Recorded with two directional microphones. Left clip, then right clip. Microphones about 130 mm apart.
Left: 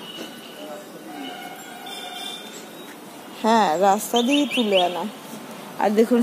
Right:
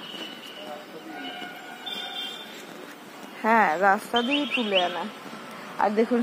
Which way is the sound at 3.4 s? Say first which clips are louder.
Left 2 dB; 25° left (ahead or behind).